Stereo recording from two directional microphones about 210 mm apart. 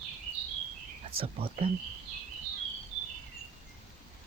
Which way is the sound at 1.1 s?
25° right (ahead or behind).